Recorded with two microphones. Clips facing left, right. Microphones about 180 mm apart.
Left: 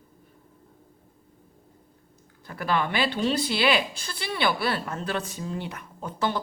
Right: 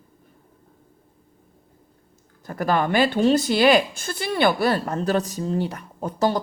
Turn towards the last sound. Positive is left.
turn(degrees=-40)  # may be behind; listen again after turning